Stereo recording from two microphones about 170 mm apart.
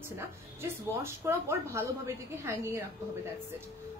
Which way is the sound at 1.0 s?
15° right (ahead or behind).